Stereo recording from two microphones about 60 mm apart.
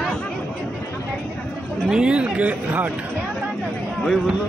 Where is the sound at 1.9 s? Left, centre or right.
Centre.